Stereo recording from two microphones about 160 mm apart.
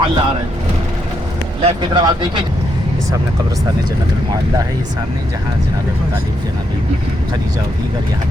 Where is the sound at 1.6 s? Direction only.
30° right (ahead or behind).